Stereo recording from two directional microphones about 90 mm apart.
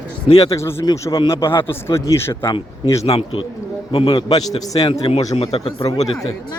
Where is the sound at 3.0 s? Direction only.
90° left.